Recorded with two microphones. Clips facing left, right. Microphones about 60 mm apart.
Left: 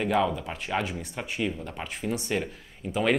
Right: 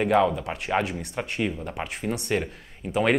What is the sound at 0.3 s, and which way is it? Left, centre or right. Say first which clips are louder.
Speech: right 3 dB; centre.